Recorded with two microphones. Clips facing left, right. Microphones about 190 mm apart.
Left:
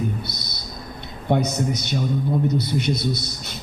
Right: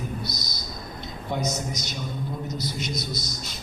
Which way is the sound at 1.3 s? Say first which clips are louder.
Left 8 dB; 60° left (ahead or behind).